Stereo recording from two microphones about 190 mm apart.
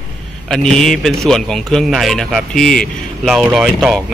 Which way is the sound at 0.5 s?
Centre (ahead or behind).